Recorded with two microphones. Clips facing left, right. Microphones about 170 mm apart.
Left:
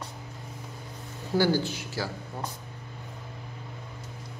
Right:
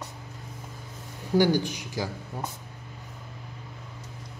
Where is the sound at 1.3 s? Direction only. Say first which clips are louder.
Right 2 dB; 15° right (ahead or behind).